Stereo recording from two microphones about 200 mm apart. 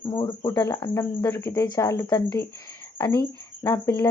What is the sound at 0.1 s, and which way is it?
A woman's voice, 20° left (ahead or behind).